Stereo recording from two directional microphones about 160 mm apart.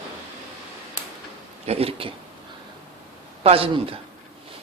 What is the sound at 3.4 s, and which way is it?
Speech, 35° right (ahead or behind).